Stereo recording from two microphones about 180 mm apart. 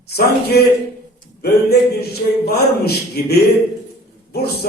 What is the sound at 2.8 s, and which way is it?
Speech, 65° left (ahead or behind).